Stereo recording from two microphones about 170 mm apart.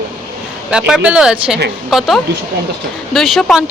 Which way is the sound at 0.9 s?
5° right (ahead or behind).